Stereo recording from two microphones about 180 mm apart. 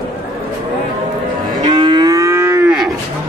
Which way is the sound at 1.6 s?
25° right (ahead or behind).